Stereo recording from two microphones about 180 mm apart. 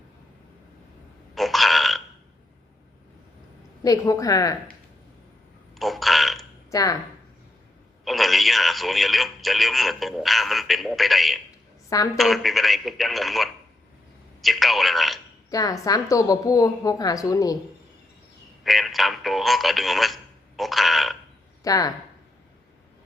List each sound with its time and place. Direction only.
1.4 s burping: centre (ahead or behind)
3.8 s a woman's voice: 20° left (ahead or behind)
5.7 s burping: centre (ahead or behind)
6.7 s speech: 20° left (ahead or behind)
8.0 s speech: centre (ahead or behind)
15.4 s a woman's voice: 20° left (ahead or behind)
18.6 s speech: centre (ahead or behind)
21.6 s speech: 20° left (ahead or behind)